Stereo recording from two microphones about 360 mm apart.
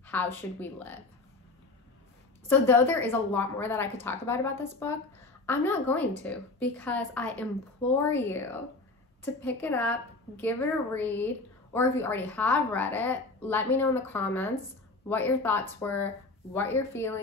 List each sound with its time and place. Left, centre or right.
0.0 s a woman's voice: centre
2.4 s a woman's voice: centre